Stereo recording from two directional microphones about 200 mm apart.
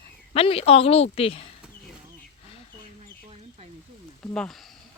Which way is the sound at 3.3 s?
30° right (ahead or behind).